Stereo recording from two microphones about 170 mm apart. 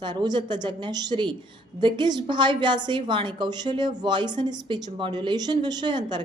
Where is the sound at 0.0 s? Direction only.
25° right (ahead or behind).